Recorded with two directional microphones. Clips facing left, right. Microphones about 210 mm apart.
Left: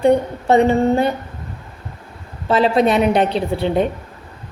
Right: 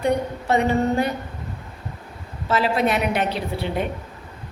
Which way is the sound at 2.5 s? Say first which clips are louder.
Left 6 dB; 30° left (ahead or behind).